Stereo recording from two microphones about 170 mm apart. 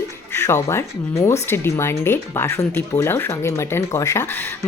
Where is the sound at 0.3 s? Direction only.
15° left (ahead or behind).